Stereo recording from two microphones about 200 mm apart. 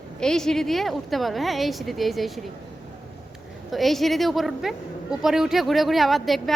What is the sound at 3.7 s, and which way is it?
A woman's voice, centre (ahead or behind).